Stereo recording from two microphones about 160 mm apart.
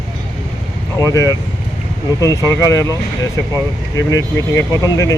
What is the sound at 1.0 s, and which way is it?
Speech, 20° left (ahead or behind).